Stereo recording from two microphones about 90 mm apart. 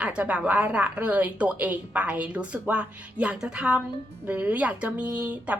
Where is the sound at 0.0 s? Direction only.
15° right (ahead or behind).